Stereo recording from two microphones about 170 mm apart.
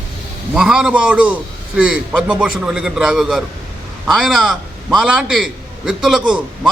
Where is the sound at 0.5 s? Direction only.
5° right (ahead or behind).